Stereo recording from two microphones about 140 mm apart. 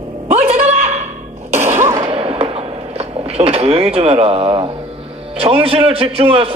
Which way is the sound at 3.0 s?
45° right (ahead or behind).